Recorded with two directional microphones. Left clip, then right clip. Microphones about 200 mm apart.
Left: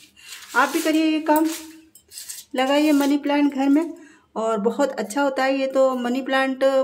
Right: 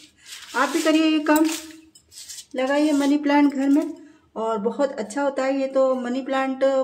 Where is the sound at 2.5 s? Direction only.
20° left (ahead or behind).